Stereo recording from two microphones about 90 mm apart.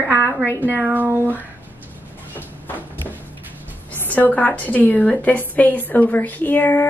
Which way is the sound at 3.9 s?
20° left (ahead or behind).